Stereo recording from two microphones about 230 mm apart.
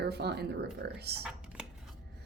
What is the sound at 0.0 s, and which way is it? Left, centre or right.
Speech, right.